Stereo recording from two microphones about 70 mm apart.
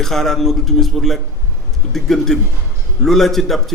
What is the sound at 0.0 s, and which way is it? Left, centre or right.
A man's voice, centre.